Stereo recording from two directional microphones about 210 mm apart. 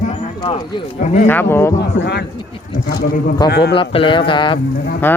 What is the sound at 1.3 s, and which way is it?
Speech, 10° left (ahead or behind).